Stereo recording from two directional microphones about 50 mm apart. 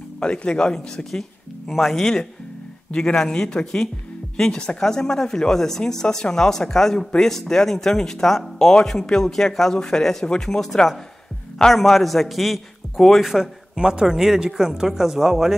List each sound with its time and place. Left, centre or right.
0.2 s a man's voice: left; by 13.3 s centre
13.3 s speech: centre